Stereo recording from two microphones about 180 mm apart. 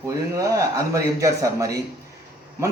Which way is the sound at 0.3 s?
20° right (ahead or behind).